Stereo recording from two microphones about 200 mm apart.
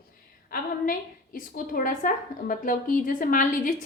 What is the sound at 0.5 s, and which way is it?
A woman's voice, 45° left (ahead or behind).